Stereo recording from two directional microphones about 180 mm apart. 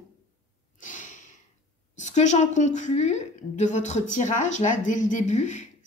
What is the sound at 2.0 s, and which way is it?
A woman's voice, 40° left (ahead or behind).